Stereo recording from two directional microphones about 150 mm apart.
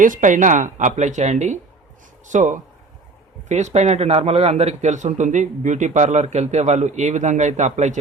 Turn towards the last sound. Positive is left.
turn(degrees=-50)  # may be behind; listen again after turning